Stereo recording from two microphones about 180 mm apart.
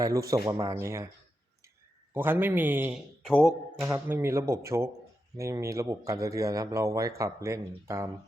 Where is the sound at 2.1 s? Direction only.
10° right (ahead or behind).